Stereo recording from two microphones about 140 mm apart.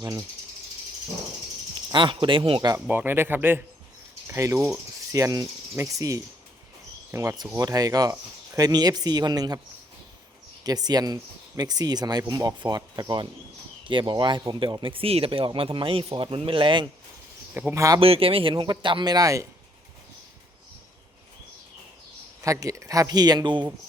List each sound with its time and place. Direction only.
0.0 s speech: 25° right (ahead or behind)
1.9 s speech: 35° right (ahead or behind)
2.9 s speech: 15° right (ahead or behind)
10.6 s speech: 30° right (ahead or behind)
17.5 s speech: 15° right (ahead or behind)
18.0 s speech: 45° right (ahead or behind); by 19.5 s 25° right (ahead or behind)
22.4 s speech: 25° right (ahead or behind)